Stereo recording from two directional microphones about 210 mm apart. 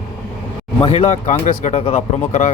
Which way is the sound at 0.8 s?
30° left (ahead or behind).